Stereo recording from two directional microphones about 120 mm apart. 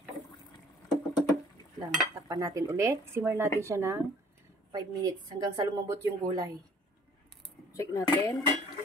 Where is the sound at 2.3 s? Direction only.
25° right (ahead or behind).